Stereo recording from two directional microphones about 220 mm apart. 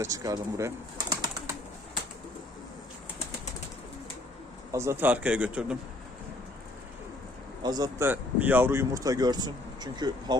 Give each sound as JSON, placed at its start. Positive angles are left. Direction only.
{"t": 0.0, "sound": "speech", "side_deg": -15}
{"t": 4.7, "sound": "speech", "side_deg": -10}
{"t": 7.6, "sound": "speech", "side_deg": -15}